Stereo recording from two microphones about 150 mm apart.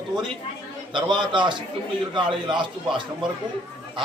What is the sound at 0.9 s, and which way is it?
A man's voice, 30° right (ahead or behind).